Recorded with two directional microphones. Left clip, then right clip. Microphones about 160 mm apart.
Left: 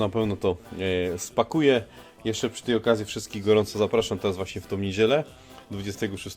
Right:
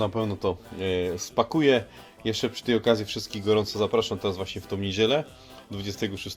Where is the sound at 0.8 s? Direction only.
5° left (ahead or behind).